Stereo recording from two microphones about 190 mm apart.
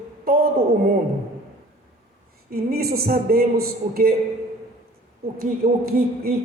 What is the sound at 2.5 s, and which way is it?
A woman's voice, 55° right (ahead or behind).